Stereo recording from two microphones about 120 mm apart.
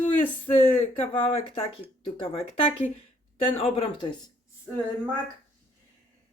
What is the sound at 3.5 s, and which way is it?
Speech, 55° left (ahead or behind).